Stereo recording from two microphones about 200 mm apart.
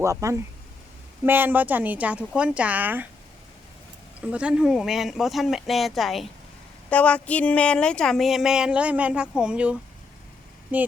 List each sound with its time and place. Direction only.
0.0 s a woman's voice: 15° right (ahead or behind)
4.2 s a woman's voice: 5° right (ahead or behind)